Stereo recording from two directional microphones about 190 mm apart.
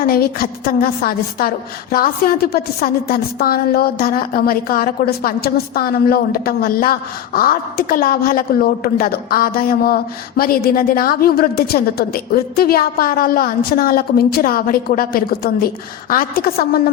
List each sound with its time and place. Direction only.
0.0 s a woman's voice: 50° left (ahead or behind)